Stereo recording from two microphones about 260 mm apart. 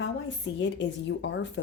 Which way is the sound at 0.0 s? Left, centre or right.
Left.